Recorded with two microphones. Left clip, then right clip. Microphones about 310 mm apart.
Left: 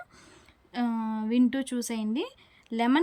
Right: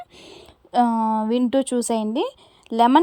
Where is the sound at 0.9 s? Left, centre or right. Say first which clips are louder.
Right 13 dB; right.